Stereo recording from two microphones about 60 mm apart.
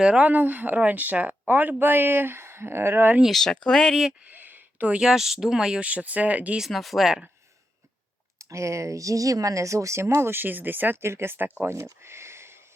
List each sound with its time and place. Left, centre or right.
0.0 s speech: centre
0.3 s speech: right
3.2 s speech: centre
4.2 s a sound: right
4.9 s speech: centre
5.8 s speech: right
6.6 s speech: centre
8.4 s speech: right
11.6 s speech: right
12.0 s a sound: right